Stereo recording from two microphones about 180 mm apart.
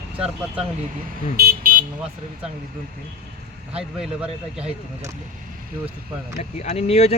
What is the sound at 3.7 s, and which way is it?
Speech, 5° right (ahead or behind).